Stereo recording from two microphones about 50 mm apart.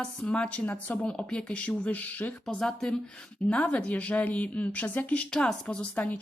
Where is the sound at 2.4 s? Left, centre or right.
Centre.